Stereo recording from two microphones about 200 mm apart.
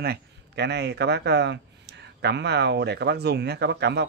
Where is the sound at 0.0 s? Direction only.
55° right (ahead or behind).